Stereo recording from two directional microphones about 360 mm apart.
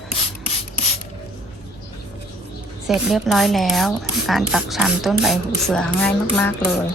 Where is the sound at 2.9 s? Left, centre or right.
Centre.